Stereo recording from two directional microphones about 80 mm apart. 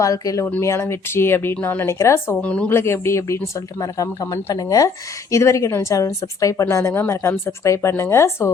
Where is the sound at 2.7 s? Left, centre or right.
Left.